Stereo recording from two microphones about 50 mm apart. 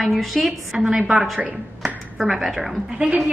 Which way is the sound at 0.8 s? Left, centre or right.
Centre.